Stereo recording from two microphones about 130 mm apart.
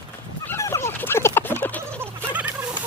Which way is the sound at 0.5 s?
20° left (ahead or behind).